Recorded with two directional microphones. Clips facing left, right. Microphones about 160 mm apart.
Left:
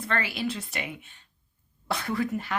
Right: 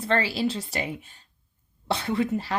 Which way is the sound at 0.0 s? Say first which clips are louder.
Right 5 dB; 30° right (ahead or behind).